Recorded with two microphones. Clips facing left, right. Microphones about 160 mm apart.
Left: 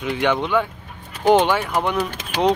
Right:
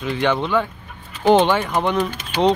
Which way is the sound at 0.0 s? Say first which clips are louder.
Even; 15° left (ahead or behind).